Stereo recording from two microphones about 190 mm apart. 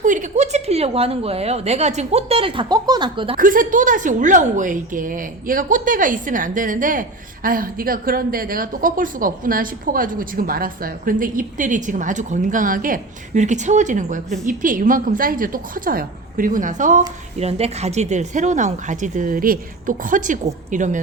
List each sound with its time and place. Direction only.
0.0 s a woman's voice: 40° right (ahead or behind); by 3.3 s 25° right (ahead or behind)
3.3 s a woman's voice: 45° right (ahead or behind)